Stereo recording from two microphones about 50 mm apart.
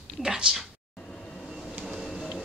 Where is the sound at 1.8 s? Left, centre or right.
Centre.